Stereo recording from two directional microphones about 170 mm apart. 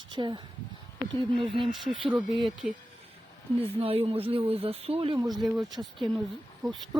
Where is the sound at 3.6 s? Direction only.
35° right (ahead or behind).